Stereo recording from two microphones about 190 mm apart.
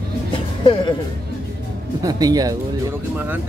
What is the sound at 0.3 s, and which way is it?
Music, 25° left (ahead or behind).